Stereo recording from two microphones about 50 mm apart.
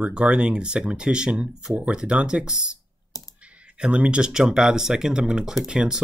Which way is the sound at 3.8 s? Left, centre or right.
Right.